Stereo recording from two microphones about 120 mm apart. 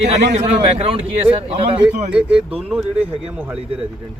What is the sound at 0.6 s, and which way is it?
A man's voice, 50° right (ahead or behind).